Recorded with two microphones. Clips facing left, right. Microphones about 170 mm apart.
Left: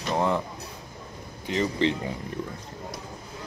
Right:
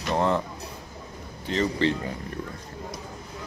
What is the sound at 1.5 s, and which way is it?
Speech, 15° left (ahead or behind).